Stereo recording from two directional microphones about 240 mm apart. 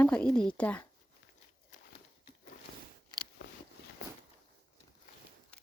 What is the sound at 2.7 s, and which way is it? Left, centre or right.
Biting, left.